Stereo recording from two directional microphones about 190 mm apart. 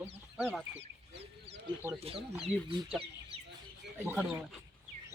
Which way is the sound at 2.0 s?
30° right (ahead or behind).